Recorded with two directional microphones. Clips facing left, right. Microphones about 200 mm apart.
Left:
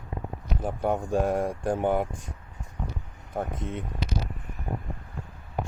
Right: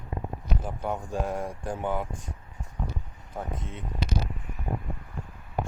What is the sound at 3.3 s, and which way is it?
Speech, 55° left (ahead or behind).